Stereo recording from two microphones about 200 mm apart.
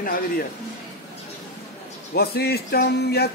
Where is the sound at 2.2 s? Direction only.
50° left (ahead or behind).